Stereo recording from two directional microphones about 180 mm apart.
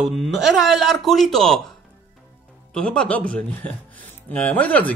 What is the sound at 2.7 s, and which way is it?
Speech, 5° left (ahead or behind).